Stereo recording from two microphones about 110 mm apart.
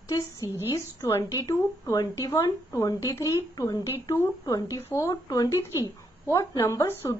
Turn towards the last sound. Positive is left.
turn(degrees=25)  # may be behind; listen again after turning